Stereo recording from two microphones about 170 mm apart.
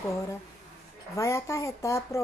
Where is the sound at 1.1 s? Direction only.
15° left (ahead or behind).